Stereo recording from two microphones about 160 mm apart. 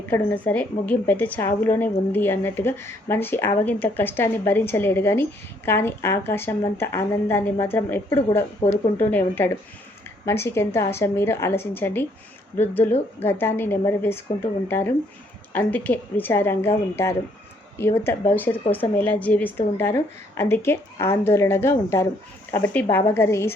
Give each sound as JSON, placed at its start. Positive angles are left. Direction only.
{"t": 0.1, "sound": "a woman's voice", "side_deg": 10}
{"t": 8.6, "sound": "speech", "side_deg": 45}
{"t": 9.0, "sound": "a woman's voice", "side_deg": 10}